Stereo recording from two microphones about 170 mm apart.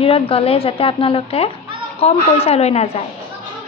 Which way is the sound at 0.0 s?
35° left (ahead or behind).